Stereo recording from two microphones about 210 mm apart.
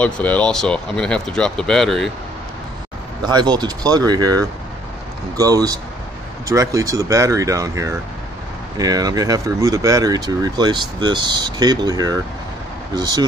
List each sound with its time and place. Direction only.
0.0 s speech: 5° left (ahead or behind)
3.2 s speech: 20° right (ahead or behind)
5.4 s speech: 15° right (ahead or behind)